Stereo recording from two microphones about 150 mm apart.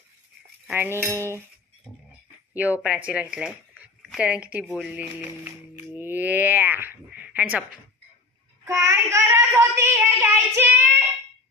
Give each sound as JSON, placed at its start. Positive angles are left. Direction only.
{"t": 0.7, "sound": "speech", "side_deg": -15}
{"t": 1.1, "sound": "cutlery", "side_deg": -20}
{"t": 2.5, "sound": "speech", "side_deg": -10}
{"t": 8.6, "sound": "speech", "side_deg": -20}